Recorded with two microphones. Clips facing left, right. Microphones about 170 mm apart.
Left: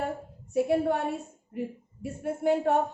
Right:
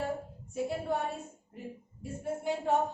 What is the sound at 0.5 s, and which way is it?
A woman's voice, 65° left (ahead or behind).